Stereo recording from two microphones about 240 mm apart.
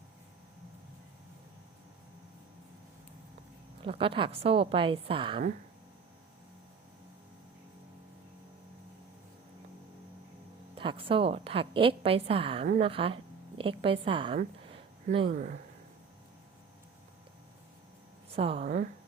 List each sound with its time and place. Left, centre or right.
3.8 s a woman's voice: right
10.8 s a woman's voice: right
14.7 s a sound: right
15.3 s speech: right
18.3 s speech: right